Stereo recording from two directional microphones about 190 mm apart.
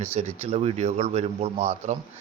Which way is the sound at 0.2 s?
35° right (ahead or behind).